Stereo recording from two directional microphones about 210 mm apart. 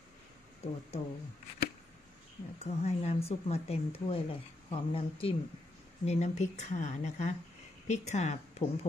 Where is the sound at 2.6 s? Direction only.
30° left (ahead or behind).